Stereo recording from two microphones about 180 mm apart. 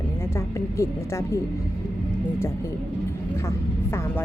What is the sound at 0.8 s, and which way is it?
Speech, 15° left (ahead or behind).